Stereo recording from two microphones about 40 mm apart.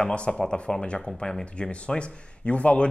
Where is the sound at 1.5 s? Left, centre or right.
Left.